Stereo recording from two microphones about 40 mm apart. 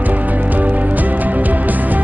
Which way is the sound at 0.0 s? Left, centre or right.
Right.